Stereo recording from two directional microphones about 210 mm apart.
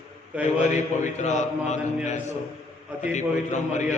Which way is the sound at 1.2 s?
35° left (ahead or behind).